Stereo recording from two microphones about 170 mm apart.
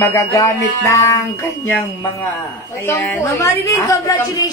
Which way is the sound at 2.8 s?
15° left (ahead or behind).